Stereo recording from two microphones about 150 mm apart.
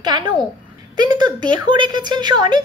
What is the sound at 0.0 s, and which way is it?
A woman's voice, 25° right (ahead or behind).